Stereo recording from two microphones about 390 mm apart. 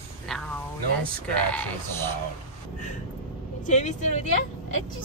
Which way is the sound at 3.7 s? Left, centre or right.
Centre.